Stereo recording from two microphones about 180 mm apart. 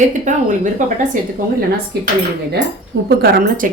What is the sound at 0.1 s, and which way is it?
Speech, 45° right (ahead or behind).